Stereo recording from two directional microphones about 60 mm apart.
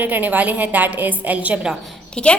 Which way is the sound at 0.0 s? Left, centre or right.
Right.